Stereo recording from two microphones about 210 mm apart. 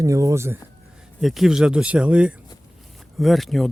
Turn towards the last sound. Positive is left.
turn(degrees=0)  # may be behind; listen again after turning